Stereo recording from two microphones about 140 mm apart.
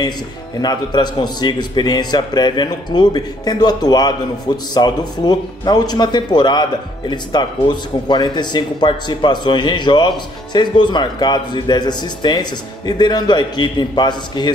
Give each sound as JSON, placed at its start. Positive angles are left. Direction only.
{"t": 0.6, "sound": "speech", "side_deg": 30}